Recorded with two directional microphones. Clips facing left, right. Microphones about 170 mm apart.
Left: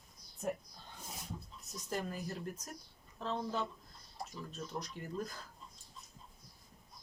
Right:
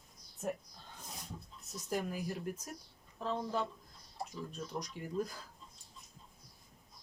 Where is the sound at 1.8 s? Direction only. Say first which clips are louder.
Right 3 dB; 10° right (ahead or behind).